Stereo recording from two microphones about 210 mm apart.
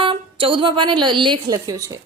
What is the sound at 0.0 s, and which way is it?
A woman's voice, 25° right (ahead or behind).